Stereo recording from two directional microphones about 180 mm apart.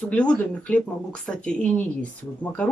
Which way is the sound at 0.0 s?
5° left (ahead or behind).